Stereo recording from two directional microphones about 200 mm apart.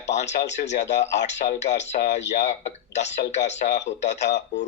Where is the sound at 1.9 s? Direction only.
60° left (ahead or behind).